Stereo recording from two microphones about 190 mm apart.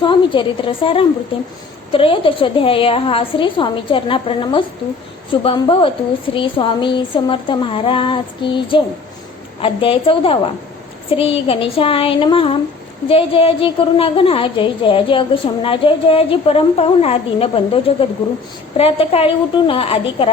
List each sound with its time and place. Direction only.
0.0 s a woman's voice: 25° left (ahead or behind)